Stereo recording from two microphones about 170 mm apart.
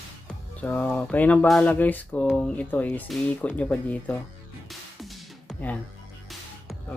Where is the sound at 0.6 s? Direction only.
10° left (ahead or behind).